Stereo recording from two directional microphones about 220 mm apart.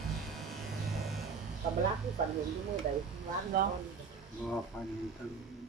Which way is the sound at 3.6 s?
45° right (ahead or behind).